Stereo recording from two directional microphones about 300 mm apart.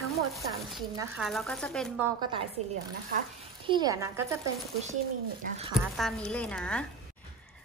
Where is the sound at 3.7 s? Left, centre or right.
Centre.